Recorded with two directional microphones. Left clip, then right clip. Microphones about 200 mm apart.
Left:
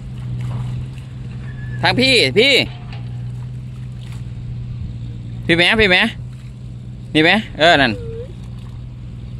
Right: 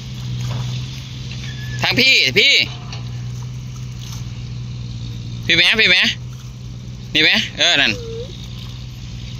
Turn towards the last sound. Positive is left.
turn(degrees=35)  # may be behind; listen again after turning